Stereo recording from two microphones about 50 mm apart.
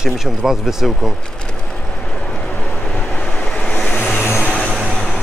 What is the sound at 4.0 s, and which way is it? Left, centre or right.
Vehicle, left.